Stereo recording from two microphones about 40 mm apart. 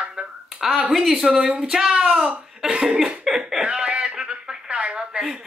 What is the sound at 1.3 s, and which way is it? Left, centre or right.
Speech, right.